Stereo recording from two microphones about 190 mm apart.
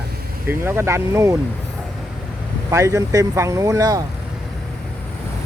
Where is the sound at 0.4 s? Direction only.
10° right (ahead or behind).